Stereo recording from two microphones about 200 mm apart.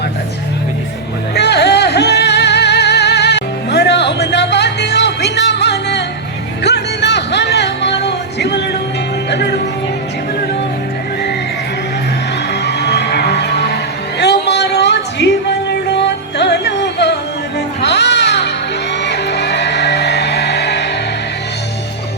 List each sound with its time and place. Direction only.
1.4 s music: 55° left (ahead or behind)
12.6 s music: 55° left (ahead or behind)
14.2 s a sound: 60° left (ahead or behind)
15.7 s music: 60° left (ahead or behind)